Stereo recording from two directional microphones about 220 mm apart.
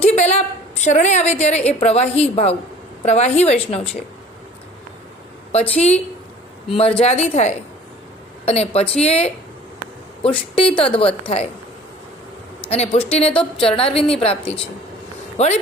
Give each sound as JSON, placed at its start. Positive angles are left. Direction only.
{"t": 0.0, "sound": "a woman's voice", "side_deg": 30}
{"t": 5.5, "sound": "a woman's voice", "side_deg": 30}
{"t": 12.6, "sound": "a woman's voice", "side_deg": 30}